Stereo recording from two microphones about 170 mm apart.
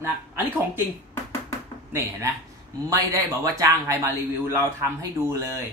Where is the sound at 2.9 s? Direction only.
20° right (ahead or behind).